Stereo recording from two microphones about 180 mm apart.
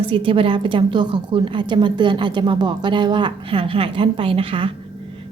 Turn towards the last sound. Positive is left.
turn(degrees=-30)  # may be behind; listen again after turning